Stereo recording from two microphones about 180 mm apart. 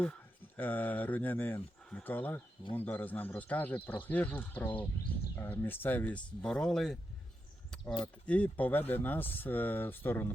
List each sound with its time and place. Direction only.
0.0 s speech: 10° left (ahead or behind)
8.0 s speech: 5° left (ahead or behind)